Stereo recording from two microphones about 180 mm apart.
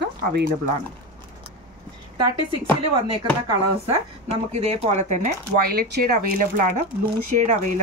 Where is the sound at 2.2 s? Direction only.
25° right (ahead or behind).